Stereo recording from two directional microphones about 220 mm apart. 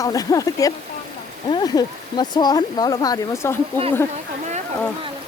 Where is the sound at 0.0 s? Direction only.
15° left (ahead or behind).